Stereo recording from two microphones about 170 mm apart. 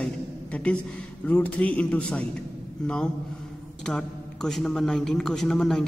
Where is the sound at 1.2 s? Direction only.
10° left (ahead or behind).